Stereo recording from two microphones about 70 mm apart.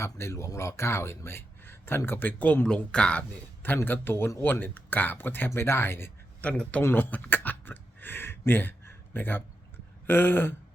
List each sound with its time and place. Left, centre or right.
0.0 s speech: left
2.6 s speech: centre
3.8 s speech: left
6.5 s speech: centre
6.9 s a sound: left
10.1 s speech: left